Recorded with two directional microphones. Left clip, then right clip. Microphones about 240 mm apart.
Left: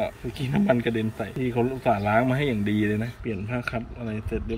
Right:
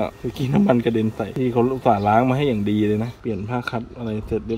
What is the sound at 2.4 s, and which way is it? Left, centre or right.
Speech, centre.